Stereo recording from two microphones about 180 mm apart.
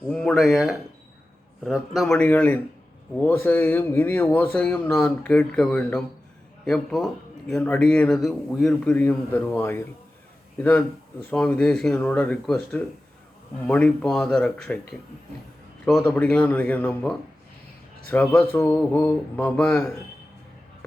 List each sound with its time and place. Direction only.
0.1 s speech: 5° left (ahead or behind)
16.0 s speech: 10° left (ahead or behind)